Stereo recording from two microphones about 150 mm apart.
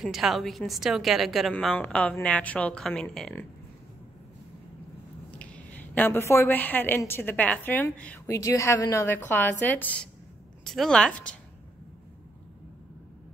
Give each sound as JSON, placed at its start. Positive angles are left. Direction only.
{"t": 0.0, "sound": "a woman's voice", "side_deg": 0}
{"t": 1.5, "sound": "speech", "side_deg": 10}
{"t": 5.4, "sound": "a woman's voice", "side_deg": 10}